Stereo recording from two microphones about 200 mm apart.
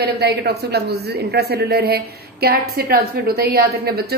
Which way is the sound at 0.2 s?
55° right (ahead or behind).